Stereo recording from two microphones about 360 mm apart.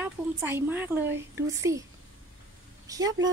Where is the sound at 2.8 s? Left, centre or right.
Centre.